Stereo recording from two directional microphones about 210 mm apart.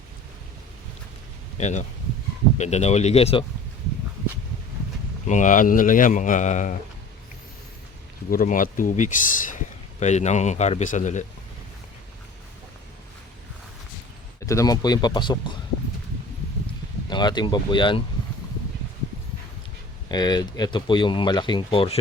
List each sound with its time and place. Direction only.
1.5 s speech: 30° left (ahead or behind)
5.3 s speech: 35° left (ahead or behind)
8.3 s speech: 40° left (ahead or behind)
14.4 s speech: 15° left (ahead or behind)
17.1 s speech: 20° left (ahead or behind)
20.1 s speech: 20° left (ahead or behind)